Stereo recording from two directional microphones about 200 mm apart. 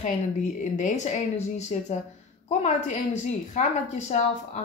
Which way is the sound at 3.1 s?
35° left (ahead or behind).